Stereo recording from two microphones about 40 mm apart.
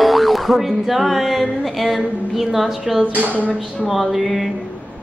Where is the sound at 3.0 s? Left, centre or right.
Right.